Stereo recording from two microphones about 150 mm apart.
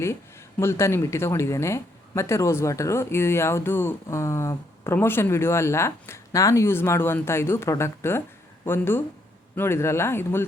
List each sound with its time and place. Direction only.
0.6 s speech: 15° left (ahead or behind)